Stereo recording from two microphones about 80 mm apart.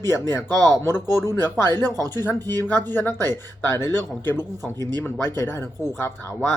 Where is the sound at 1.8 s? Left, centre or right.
Right.